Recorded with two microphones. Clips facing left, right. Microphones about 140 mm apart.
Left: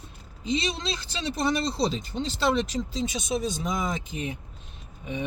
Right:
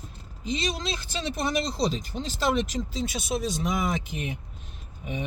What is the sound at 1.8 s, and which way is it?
Speech, 45° right (ahead or behind).